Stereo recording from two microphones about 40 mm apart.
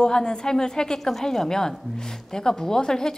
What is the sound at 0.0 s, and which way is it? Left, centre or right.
A woman's voice, centre.